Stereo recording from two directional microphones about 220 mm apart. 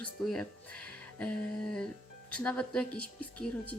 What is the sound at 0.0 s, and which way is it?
Speech, 5° left (ahead or behind).